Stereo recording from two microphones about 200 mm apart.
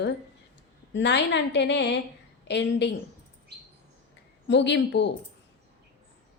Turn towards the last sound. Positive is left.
turn(degrees=60)  # may be behind; listen again after turning